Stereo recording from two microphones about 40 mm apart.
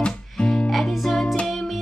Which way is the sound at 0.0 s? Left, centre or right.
Left.